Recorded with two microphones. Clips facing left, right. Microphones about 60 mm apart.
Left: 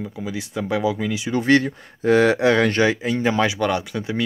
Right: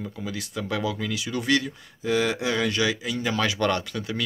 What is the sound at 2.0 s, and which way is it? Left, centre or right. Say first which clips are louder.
Speech: left 8 dB; left.